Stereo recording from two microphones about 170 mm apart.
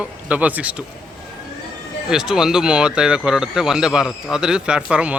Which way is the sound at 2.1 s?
5° right (ahead or behind).